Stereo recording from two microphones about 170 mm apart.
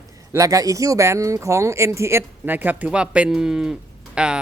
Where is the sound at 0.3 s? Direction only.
20° right (ahead or behind).